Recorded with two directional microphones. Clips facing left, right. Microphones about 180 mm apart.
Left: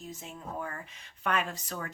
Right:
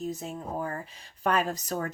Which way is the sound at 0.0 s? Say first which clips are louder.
Right 8 dB; 40° right (ahead or behind).